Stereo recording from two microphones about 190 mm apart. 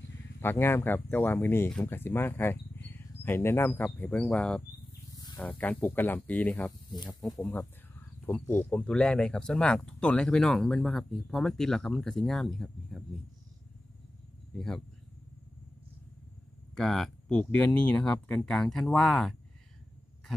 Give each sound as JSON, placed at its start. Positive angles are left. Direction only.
{"t": 0.4, "sound": "speech", "side_deg": 10}
{"t": 2.7, "sound": "cricket", "side_deg": 10}
{"t": 5.1, "sound": "wild animals", "side_deg": 20}
{"t": 5.6, "sound": "speech", "side_deg": 10}
{"t": 6.9, "sound": "speech", "side_deg": 20}
{"t": 7.2, "sound": "speech", "side_deg": 0}
{"t": 16.7, "sound": "speech", "side_deg": 0}